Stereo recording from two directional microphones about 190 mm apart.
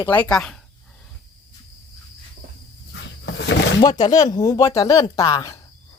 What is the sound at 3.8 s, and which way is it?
Speech, 20° left (ahead or behind).